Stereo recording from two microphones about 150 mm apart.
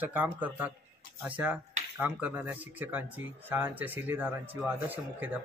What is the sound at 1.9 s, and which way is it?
Speech, 10° right (ahead or behind).